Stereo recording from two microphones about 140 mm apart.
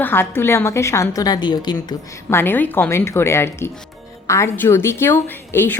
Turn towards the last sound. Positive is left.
turn(degrees=15)  # may be behind; listen again after turning